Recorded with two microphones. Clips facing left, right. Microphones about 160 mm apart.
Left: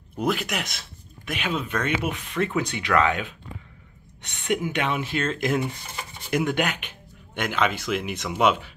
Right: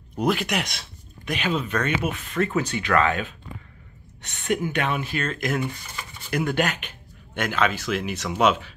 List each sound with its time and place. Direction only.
0.2 s speech: centre (ahead or behind)
4.5 s speech: 15° left (ahead or behind)